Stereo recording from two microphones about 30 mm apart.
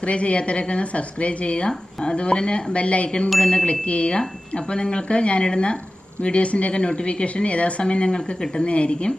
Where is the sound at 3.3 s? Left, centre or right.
Left.